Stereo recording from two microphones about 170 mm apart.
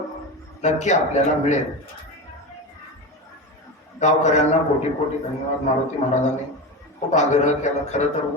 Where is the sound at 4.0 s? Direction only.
45° left (ahead or behind).